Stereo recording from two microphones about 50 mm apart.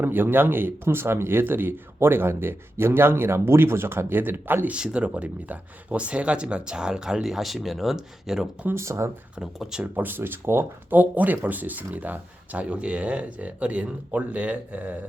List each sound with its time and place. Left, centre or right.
0.0 s speech: right
4.7 s speech: right
8.7 s speech: right
9.4 s speech: centre
9.8 s speech: right
10.1 s speech: right
10.8 s speech: right